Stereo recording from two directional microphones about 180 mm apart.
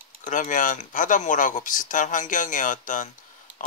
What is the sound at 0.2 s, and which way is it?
Speech, 45° left (ahead or behind).